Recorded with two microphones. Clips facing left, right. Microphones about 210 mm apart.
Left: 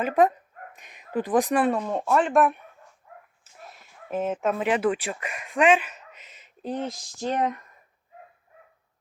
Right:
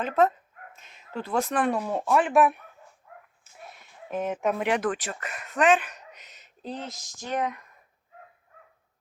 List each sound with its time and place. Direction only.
0.0 s speech: 15° left (ahead or behind)
1.8 s speech: 5° right (ahead or behind)
3.6 s speech: centre (ahead or behind)
7.3 s speech: 35° left (ahead or behind)